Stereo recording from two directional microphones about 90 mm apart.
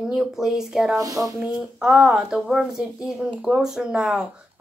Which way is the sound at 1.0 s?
40° right (ahead or behind).